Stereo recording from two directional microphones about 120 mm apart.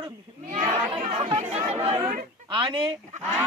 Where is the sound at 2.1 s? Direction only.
45° right (ahead or behind).